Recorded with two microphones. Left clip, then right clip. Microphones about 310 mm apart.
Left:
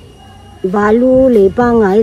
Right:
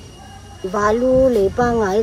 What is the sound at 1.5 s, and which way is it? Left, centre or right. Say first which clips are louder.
Speech: left 7 dB; centre.